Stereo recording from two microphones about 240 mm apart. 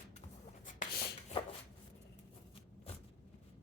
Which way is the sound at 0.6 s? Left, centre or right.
Left.